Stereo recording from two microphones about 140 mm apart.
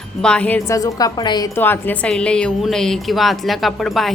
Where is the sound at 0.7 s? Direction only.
25° left (ahead or behind).